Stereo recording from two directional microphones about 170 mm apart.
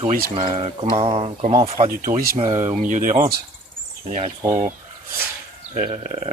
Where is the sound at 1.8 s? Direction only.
55° right (ahead or behind).